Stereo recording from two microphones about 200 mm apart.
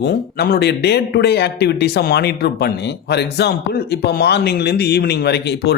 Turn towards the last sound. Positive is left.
turn(degrees=55)  # may be behind; listen again after turning